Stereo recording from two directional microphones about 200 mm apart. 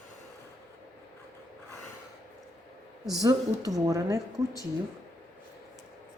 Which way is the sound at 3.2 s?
15° right (ahead or behind).